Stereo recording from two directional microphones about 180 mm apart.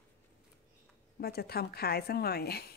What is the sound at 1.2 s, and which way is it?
A woman's voice, 60° left (ahead or behind).